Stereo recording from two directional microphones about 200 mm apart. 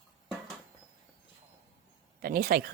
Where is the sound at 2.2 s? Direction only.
45° right (ahead or behind).